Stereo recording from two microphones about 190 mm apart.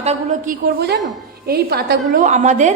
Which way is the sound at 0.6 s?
60° right (ahead or behind).